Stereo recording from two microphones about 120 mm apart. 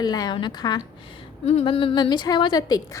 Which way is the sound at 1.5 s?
55° left (ahead or behind).